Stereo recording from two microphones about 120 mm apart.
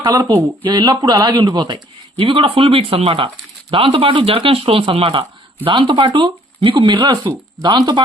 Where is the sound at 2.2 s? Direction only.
45° right (ahead or behind).